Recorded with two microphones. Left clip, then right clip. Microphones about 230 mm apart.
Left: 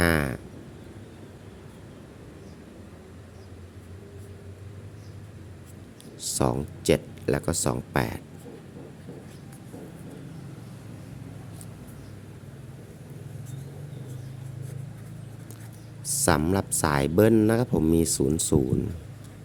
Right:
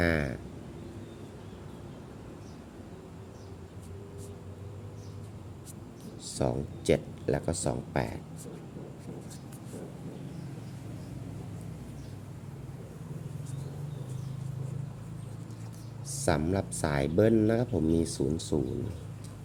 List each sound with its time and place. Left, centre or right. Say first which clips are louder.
0.0 s a sound: left 5 dB; left
6.2 s speech: left 5 dB; left
16.0 s speech: left 6 dB; left